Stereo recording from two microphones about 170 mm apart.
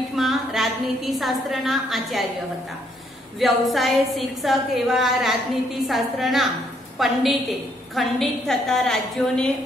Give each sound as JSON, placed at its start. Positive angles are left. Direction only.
{"t": 0.1, "sound": "a woman's voice", "side_deg": 0}
{"t": 3.3, "sound": "a woman's voice", "side_deg": 0}